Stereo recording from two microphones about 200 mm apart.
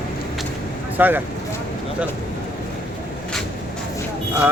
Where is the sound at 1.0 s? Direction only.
10° right (ahead or behind).